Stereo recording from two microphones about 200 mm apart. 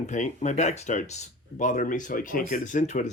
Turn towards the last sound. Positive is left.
turn(degrees=35)  # may be behind; listen again after turning